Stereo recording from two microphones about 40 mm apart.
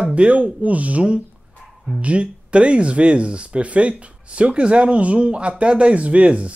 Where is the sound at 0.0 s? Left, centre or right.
Right.